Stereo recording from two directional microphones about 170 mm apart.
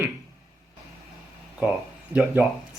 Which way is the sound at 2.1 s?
10° right (ahead or behind).